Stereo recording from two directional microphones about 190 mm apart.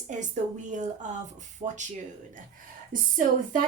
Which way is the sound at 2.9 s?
45° right (ahead or behind).